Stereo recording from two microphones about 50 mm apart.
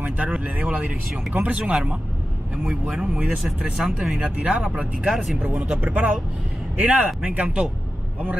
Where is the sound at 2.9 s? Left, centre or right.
Right.